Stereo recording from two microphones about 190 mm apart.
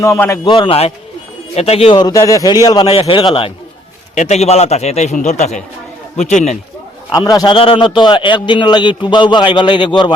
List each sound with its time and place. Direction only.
0.0 s a man's voice: 15° left (ahead or behind)
0.4 s a man's voice: 25° left (ahead or behind)
7.1 s a man's voice: 20° left (ahead or behind)